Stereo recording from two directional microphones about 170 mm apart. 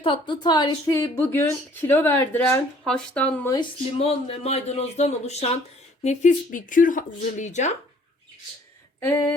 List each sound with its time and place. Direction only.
0.0 s a woman's voice: 30° left (ahead or behind); by 3.5 s 10° left (ahead or behind)
3.9 s speech: 35° left (ahead or behind)